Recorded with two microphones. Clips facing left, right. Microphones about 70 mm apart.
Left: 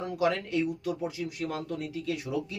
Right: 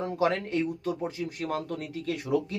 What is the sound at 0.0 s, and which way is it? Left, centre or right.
A man's voice, right.